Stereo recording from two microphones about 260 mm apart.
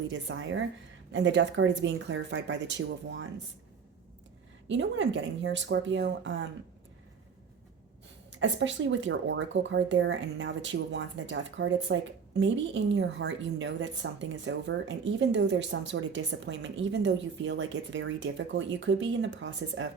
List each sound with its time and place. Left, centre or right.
0.1 s a woman's voice: right
4.7 s a woman's voice: right
8.3 s a woman's voice: right